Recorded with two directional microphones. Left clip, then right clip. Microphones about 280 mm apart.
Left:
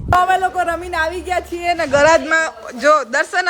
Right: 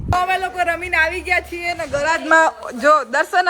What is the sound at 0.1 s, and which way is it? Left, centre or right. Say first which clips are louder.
A man's voice: left 5 dB; centre.